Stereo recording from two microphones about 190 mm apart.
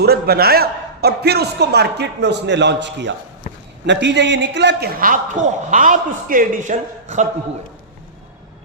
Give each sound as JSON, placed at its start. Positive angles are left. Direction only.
{"t": 0.0, "sound": "a man's voice", "side_deg": -55}